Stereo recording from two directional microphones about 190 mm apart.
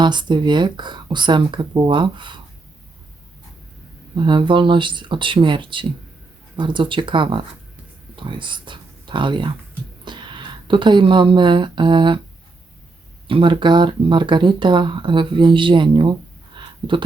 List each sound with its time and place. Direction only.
0.0 s speech: 25° right (ahead or behind)
4.1 s speech: 25° right (ahead or behind)
13.2 s speech: 25° right (ahead or behind)
16.6 s a sound: 25° right (ahead or behind)